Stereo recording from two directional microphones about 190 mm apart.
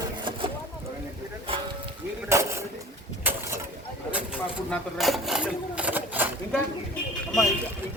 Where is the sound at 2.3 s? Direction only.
15° right (ahead or behind).